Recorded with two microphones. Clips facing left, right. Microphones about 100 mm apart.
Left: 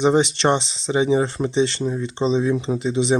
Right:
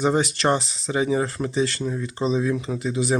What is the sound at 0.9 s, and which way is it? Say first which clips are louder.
Speech: left 4 dB; 25° left (ahead or behind).